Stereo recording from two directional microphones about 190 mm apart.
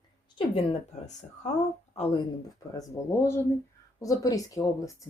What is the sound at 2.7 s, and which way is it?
Speech, 15° left (ahead or behind).